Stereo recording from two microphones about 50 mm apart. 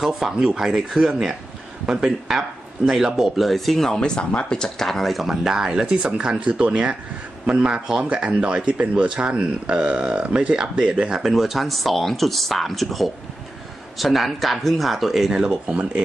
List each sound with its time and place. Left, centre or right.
0.4 s speech: centre
4.0 s speech: centre
11.1 s speech: centre; by 16.0 s right